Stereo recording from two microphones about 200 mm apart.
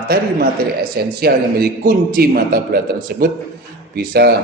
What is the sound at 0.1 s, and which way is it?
A man's voice, 50° right (ahead or behind).